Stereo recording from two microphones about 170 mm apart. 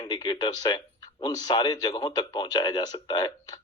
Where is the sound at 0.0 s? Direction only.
25° left (ahead or behind).